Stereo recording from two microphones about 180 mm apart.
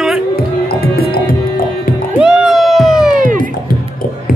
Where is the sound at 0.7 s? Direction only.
55° left (ahead or behind).